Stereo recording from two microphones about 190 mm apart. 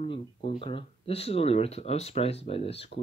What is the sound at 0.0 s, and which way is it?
Speech, 30° left (ahead or behind).